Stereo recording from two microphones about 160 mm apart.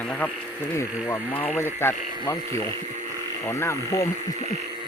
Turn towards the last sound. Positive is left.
turn(degrees=15)  # may be behind; listen again after turning